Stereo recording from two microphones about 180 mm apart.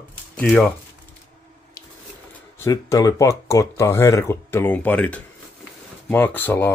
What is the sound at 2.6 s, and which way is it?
Speech, 20° left (ahead or behind).